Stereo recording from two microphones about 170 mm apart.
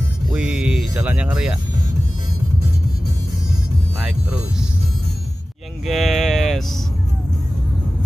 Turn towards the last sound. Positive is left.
turn(degrees=0)  # may be behind; listen again after turning